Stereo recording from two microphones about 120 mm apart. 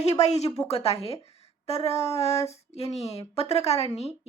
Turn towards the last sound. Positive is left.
turn(degrees=55)  # may be behind; listen again after turning